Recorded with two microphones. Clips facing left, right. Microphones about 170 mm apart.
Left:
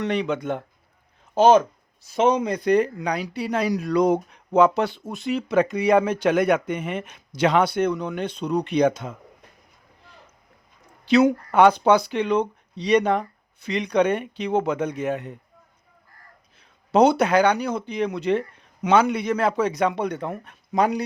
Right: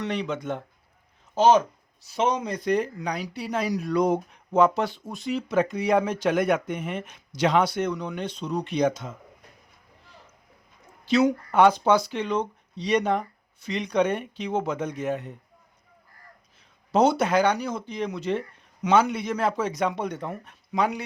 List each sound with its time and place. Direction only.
0.0 s speech: 60° left (ahead or behind)
11.0 s speech: 65° left (ahead or behind)
16.9 s speech: 65° left (ahead or behind)
20.7 s speech: 40° left (ahead or behind)